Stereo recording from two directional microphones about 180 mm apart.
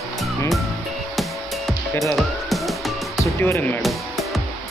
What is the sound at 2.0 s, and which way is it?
Music, centre (ahead or behind).